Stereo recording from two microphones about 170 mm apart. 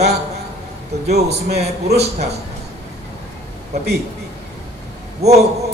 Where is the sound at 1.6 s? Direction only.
70° right (ahead or behind).